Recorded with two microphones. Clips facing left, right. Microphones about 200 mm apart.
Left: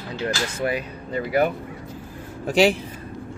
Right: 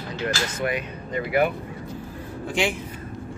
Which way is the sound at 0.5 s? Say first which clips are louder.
Left 1 dB; 35° left (ahead or behind).